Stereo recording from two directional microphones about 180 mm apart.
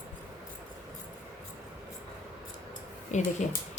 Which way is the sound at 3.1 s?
40° left (ahead or behind).